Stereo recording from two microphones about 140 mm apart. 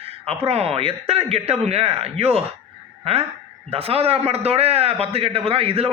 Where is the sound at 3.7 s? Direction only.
45° right (ahead or behind).